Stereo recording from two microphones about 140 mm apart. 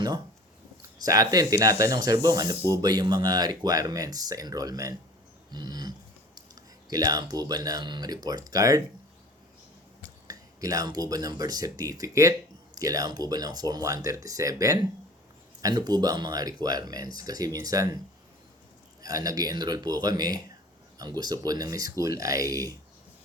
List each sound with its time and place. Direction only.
1.0 s speech: 25° right (ahead or behind)
5.5 s a sound: 30° right (ahead or behind)
6.9 s speech: 25° right (ahead or behind)
10.2 s speech: 25° right (ahead or behind)
19.0 s speech: 25° right (ahead or behind)